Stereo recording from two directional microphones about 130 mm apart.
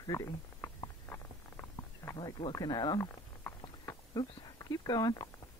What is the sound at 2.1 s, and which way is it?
Speech, 40° left (ahead or behind).